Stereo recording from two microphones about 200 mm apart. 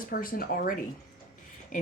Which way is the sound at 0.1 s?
45° left (ahead or behind).